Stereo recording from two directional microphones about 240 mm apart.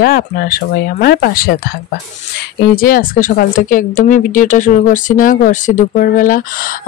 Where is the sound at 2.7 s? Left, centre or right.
Left.